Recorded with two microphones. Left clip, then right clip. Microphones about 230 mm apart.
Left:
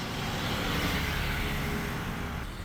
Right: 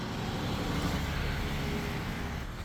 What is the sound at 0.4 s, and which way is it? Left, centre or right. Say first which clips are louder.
Vehicle: left 5 dB; left.